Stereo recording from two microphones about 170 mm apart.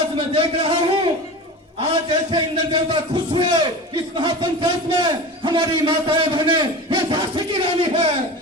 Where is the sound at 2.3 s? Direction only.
25° right (ahead or behind).